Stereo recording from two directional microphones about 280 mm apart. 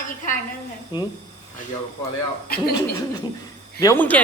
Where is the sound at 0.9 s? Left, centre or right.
Centre.